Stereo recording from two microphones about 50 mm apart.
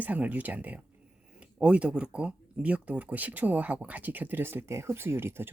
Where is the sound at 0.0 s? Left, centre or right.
Right.